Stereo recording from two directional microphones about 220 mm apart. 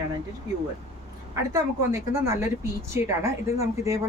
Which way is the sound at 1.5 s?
15° right (ahead or behind).